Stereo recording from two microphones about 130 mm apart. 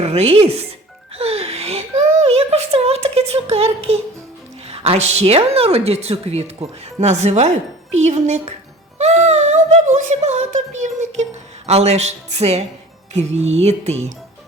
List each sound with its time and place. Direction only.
0.0 s a woman's voice: 55° right (ahead or behind)